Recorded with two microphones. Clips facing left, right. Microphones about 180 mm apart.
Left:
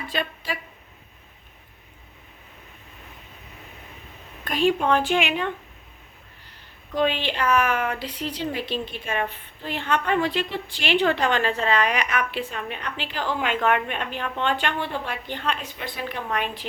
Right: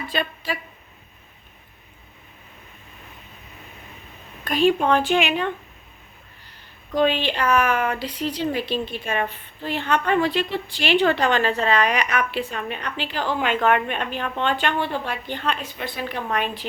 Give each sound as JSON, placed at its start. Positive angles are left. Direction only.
{"t": 0.1, "sound": "speech", "side_deg": -35}
{"t": 4.5, "sound": "a woman's voice", "side_deg": -35}
{"t": 6.9, "sound": "a woman's voice", "side_deg": -40}